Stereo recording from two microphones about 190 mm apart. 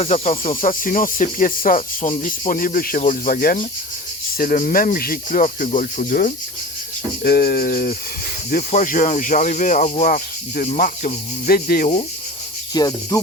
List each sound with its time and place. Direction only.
0.0 s speech: 35° left (ahead or behind); by 11.9 s 50° left (ahead or behind)
12.7 s cricket: 20° left (ahead or behind)